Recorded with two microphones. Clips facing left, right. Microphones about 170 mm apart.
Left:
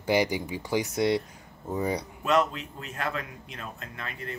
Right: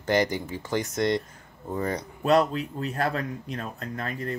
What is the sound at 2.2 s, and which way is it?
A man's voice, 35° right (ahead or behind).